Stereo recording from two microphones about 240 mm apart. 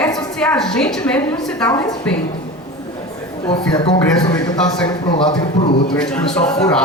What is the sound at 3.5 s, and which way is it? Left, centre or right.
Speech, left.